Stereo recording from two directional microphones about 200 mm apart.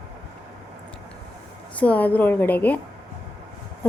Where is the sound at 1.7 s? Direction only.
5° left (ahead or behind).